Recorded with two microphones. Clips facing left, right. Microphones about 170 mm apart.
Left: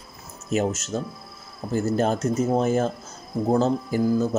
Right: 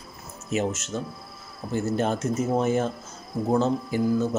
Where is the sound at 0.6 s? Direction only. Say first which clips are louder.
Left 2 dB; 40° left (ahead or behind).